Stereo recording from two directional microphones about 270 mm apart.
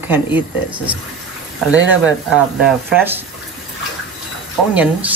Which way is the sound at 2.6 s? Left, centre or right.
Centre.